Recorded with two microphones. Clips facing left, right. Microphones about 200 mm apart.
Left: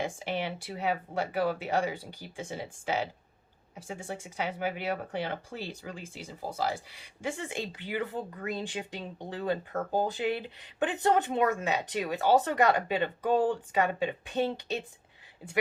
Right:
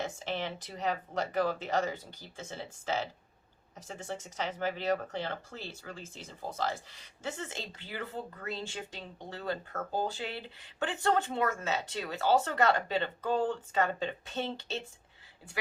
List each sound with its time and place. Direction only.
0.0 s speech: 10° left (ahead or behind)